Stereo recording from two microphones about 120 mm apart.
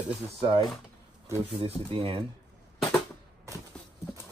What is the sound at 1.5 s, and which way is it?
Speech, 50° right (ahead or behind).